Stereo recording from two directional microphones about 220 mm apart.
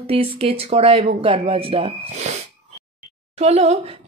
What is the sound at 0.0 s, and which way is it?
A woman's voice, 25° right (ahead or behind).